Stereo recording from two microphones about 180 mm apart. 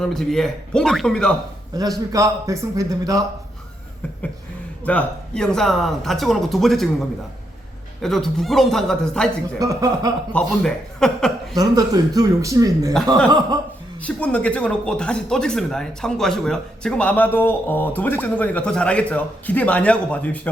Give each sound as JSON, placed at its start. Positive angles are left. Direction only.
{"t": 0.0, "sound": "speech", "side_deg": 0}
{"t": 1.7, "sound": "a man's voice", "side_deg": -20}
{"t": 4.9, "sound": "speech", "side_deg": 5}
{"t": 8.0, "sound": "speech", "side_deg": 0}
{"t": 9.6, "sound": "a man's voice", "side_deg": -20}
{"t": 10.3, "sound": "speech", "side_deg": 5}
{"t": 11.5, "sound": "a man's voice", "side_deg": -20}
{"t": 14.0, "sound": "speech", "side_deg": 5}